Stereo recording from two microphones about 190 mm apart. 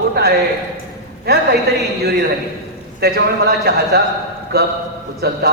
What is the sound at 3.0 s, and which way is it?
A man's voice, 55° right (ahead or behind).